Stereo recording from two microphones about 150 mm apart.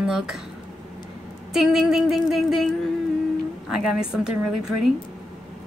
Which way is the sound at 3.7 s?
5° right (ahead or behind).